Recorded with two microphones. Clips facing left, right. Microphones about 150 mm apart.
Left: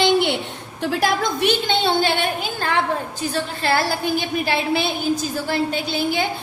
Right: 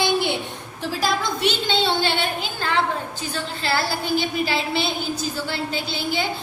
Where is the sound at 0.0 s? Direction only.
65° left (ahead or behind).